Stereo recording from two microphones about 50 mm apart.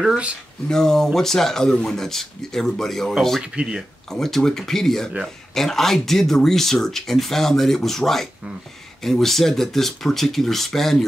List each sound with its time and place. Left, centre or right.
0.7 s speech: centre
3.5 s speech: centre
4.1 s speech: centre